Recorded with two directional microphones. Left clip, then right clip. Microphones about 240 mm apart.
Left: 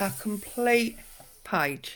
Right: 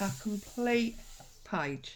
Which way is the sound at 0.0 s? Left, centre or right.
Left.